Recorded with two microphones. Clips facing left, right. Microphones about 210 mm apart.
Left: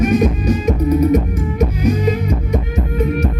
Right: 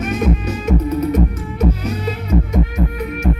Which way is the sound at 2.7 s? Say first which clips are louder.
Left 4 dB; 25° left (ahead or behind).